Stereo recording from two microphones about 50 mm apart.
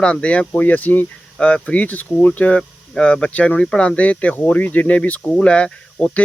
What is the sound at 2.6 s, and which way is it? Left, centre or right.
Speech, left.